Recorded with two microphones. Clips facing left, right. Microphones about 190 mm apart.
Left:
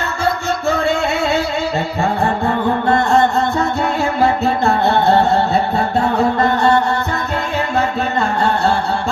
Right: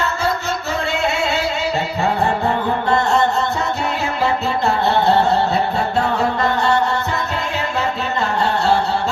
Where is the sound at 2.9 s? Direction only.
55° left (ahead or behind).